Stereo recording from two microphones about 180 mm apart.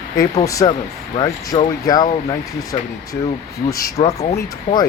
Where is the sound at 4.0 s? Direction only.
35° left (ahead or behind).